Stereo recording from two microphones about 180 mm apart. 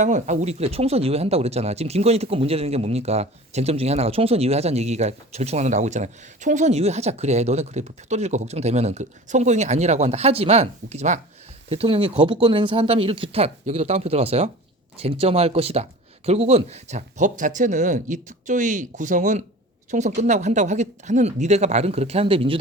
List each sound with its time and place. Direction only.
0.0 s speech: 40° right (ahead or behind)